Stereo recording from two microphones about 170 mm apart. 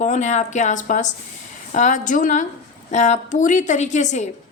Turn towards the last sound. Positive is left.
turn(degrees=45)  # may be behind; listen again after turning